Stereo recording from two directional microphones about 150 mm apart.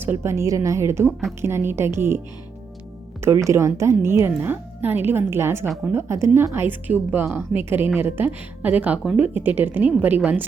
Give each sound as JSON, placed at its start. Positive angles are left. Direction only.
{"t": 0.0, "sound": "speech", "side_deg": -15}
{"t": 3.4, "sound": "speech", "side_deg": -20}
{"t": 5.6, "sound": "a woman's voice", "side_deg": 0}
{"t": 5.9, "sound": "speech", "side_deg": -15}